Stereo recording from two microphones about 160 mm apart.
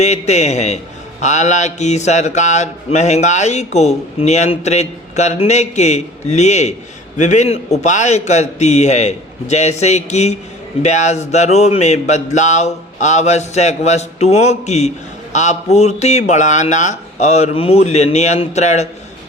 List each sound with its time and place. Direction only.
0.0 s speech: 45° left (ahead or behind)